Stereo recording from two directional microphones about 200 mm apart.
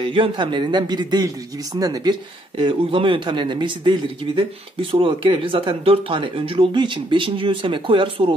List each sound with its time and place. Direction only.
0.0 s a man's voice: 25° right (ahead or behind)